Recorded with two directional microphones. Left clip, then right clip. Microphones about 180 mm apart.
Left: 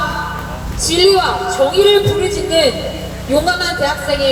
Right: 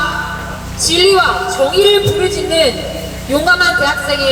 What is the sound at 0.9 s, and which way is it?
A woman's voice, 25° right (ahead or behind).